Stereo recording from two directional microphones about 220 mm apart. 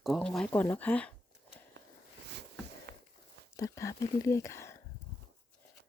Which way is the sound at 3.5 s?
15° left (ahead or behind).